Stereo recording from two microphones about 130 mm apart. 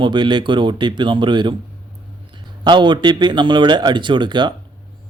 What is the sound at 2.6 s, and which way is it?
Speech, 35° right (ahead or behind).